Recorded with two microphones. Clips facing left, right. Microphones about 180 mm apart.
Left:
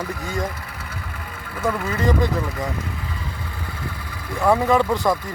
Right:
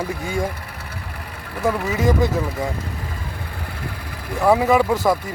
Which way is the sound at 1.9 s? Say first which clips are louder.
Right 2 dB; 10° right (ahead or behind).